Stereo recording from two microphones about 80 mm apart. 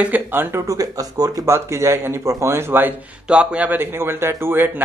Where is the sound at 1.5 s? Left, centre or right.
Right.